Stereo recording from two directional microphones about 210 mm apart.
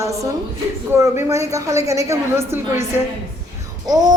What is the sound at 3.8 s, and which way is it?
Speech, 20° right (ahead or behind).